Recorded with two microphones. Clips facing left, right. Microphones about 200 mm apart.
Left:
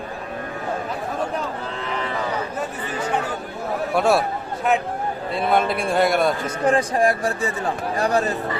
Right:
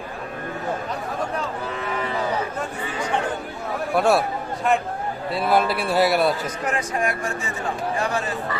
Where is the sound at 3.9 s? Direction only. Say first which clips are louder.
Even; centre (ahead or behind).